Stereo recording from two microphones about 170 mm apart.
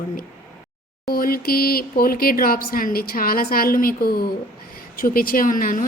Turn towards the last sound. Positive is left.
turn(degrees=55)  # may be behind; listen again after turning